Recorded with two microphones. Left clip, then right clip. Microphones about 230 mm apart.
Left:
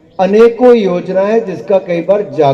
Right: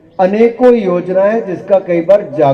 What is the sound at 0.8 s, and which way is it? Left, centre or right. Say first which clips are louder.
A man's voice: even; left.